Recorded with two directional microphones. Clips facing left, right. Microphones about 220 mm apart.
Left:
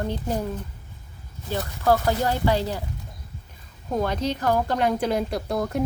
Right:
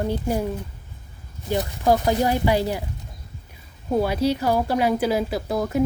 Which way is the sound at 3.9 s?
10° right (ahead or behind).